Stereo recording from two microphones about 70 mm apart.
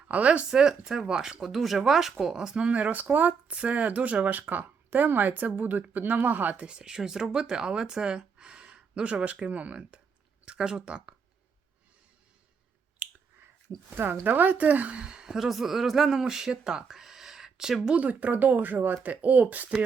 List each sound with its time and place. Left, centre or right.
0.1 s speech: right
6.7 s a woman's voice: centre
13.0 s chewing: centre
13.9 s a woman's voice: right; by 17.9 s centre
17.9 s speech: centre